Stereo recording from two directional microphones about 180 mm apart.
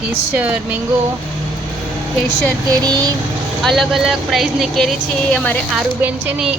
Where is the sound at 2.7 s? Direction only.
20° right (ahead or behind).